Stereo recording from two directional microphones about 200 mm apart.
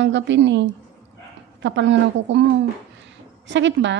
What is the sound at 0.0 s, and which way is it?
Speech, 65° right (ahead or behind).